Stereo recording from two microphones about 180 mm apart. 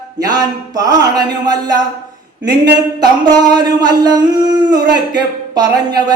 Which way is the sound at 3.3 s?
20° right (ahead or behind).